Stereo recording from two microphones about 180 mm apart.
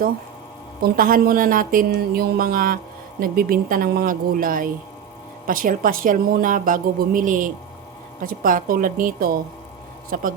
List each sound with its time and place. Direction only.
0.8 s a woman's voice: 50° right (ahead or behind)